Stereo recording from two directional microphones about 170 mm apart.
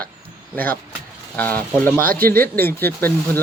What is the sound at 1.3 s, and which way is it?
Speech, 10° left (ahead or behind).